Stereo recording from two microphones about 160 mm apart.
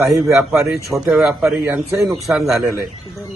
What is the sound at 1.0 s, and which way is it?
A man's voice, 5° right (ahead or behind).